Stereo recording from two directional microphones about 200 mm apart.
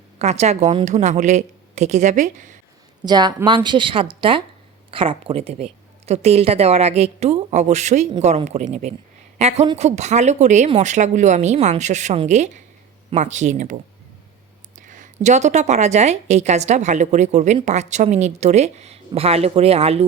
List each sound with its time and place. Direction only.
0.2 s a woman's voice: 35° right (ahead or behind)
3.0 s a woman's voice: 20° right (ahead or behind); by 13.7 s 35° right (ahead or behind)
14.8 s a woman's voice: 40° right (ahead or behind)